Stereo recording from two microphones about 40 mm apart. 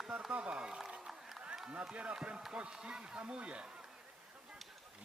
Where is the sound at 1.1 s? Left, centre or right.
Centre.